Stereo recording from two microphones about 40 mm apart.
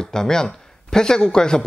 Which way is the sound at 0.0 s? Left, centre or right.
Centre.